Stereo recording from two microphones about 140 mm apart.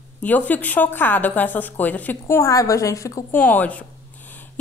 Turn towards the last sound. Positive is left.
turn(degrees=10)  # may be behind; listen again after turning